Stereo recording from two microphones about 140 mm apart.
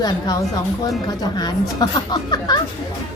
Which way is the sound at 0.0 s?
25° left (ahead or behind).